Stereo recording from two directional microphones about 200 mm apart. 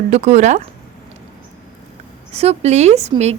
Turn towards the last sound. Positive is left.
turn(degrees=-35)  # may be behind; listen again after turning